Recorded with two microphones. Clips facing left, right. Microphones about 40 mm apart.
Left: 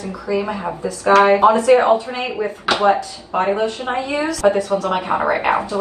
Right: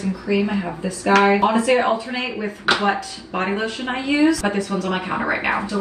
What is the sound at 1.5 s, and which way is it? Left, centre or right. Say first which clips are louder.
Speech: left 5 dB; right.